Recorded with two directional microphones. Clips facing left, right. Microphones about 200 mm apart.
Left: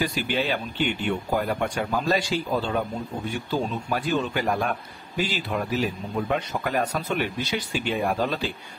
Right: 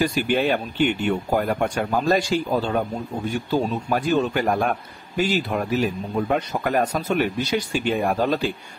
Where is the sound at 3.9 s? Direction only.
45° right (ahead or behind).